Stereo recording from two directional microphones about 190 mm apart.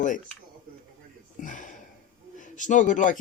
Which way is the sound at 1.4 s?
45° left (ahead or behind).